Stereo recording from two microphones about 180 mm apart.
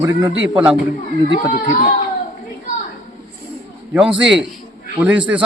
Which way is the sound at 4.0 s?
5° right (ahead or behind).